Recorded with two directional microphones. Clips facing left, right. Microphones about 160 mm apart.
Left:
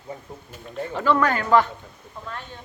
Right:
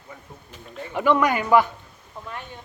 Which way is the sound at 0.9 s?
15° right (ahead or behind).